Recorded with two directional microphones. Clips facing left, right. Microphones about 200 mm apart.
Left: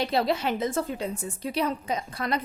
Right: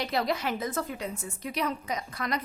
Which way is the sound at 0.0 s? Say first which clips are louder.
Left 4 dB; 30° left (ahead or behind).